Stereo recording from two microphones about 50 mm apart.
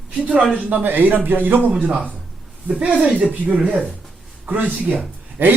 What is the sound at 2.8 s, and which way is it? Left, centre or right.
A man's voice, right.